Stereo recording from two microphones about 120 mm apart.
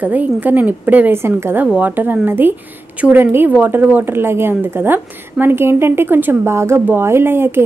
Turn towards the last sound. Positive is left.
turn(degrees=-20)  # may be behind; listen again after turning